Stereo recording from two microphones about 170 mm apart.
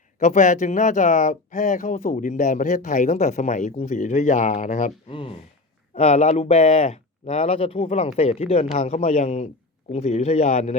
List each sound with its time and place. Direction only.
0.2 s speech: 45° left (ahead or behind)
5.0 s speech: 35° left (ahead or behind)